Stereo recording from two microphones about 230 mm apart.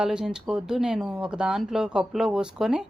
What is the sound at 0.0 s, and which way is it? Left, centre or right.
A woman's voice, centre.